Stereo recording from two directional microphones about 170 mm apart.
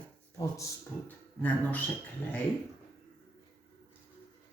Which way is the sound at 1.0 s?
10° left (ahead or behind).